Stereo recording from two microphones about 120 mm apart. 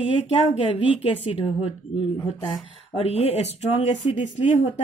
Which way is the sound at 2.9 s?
55° left (ahead or behind).